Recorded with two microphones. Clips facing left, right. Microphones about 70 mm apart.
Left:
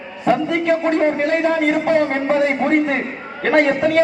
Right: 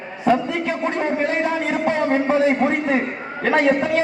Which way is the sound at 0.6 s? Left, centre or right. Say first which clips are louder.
Left 6 dB; centre.